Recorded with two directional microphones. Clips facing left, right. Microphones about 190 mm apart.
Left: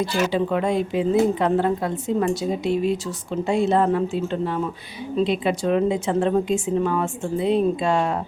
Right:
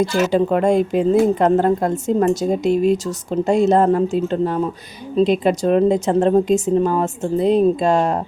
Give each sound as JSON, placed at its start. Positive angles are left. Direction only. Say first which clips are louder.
{"t": 0.0, "sound": "a woman's voice", "louder": "right 5 dB", "side_deg": -45}